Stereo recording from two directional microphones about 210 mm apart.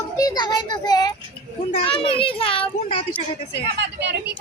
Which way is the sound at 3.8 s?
55° right (ahead or behind).